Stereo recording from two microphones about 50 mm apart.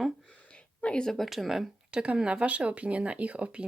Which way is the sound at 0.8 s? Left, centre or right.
Centre.